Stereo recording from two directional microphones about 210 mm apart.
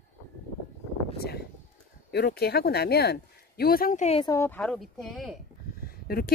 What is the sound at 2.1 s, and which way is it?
Speech, 50° left (ahead or behind).